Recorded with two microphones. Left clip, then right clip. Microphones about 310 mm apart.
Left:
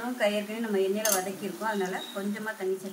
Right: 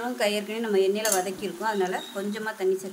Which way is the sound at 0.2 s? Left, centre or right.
Right.